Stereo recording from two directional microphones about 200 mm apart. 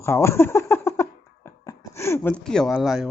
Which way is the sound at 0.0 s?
15° left (ahead or behind).